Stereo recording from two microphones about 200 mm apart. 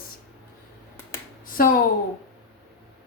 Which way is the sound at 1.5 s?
45° left (ahead or behind).